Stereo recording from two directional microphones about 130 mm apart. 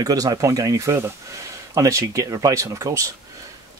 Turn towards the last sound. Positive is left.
turn(degrees=-25)  # may be behind; listen again after turning